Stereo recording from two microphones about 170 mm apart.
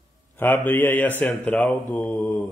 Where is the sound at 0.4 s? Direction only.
10° left (ahead or behind).